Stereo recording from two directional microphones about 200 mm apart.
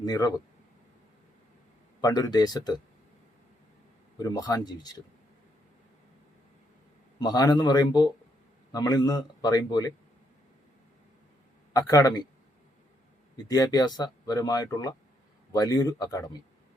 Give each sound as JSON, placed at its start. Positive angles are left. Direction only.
{"t": 0.0, "sound": "speech", "side_deg": 20}
{"t": 2.0, "sound": "speech", "side_deg": 20}
{"t": 4.2, "sound": "speech", "side_deg": 20}
{"t": 7.2, "sound": "speech", "side_deg": 20}
{"t": 11.7, "sound": "speech", "side_deg": 20}
{"t": 13.3, "sound": "speech", "side_deg": 20}